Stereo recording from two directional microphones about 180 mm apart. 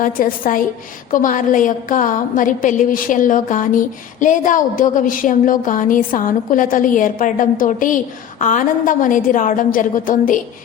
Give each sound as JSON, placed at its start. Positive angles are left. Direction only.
{"t": 0.0, "sound": "a woman's voice", "side_deg": 50}